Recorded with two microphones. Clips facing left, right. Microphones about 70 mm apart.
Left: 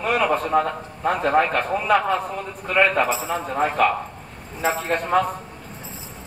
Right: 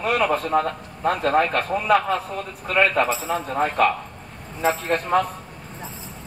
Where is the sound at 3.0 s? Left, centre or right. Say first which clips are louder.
Even; centre.